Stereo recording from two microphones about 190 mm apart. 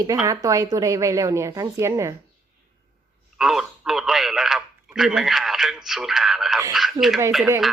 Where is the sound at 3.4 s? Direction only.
Centre (ahead or behind).